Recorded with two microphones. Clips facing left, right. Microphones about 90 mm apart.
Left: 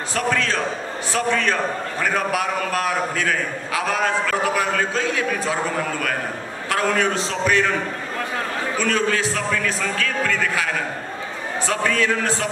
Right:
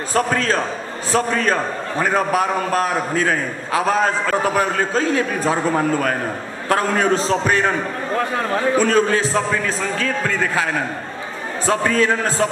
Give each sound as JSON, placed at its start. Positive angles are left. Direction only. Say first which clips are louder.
{"t": 0.1, "sound": "a man's voice", "louder": "right 4 dB", "side_deg": -40}
{"t": 8.7, "sound": "a man's voice", "louder": "right 4 dB", "side_deg": -35}